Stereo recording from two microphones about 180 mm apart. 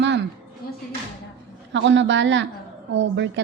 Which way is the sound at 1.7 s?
90° right.